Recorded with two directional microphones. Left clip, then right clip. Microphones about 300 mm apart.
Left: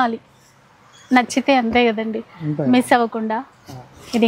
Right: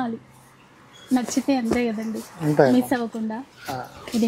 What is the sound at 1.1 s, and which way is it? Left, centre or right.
Speech, centre.